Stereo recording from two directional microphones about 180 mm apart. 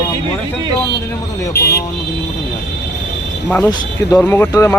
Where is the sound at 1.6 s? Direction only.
65° left (ahead or behind).